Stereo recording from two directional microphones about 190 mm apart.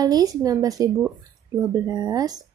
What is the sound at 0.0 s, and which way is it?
A woman's voice, 20° right (ahead or behind).